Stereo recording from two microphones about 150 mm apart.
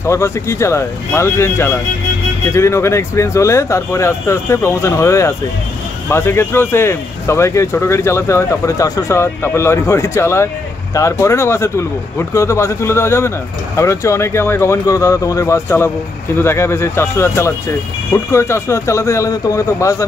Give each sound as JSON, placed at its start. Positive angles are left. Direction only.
{"t": 0.0, "sound": "speech", "side_deg": 20}